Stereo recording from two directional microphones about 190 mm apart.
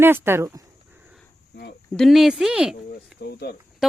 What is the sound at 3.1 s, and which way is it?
Speech, 60° left (ahead or behind).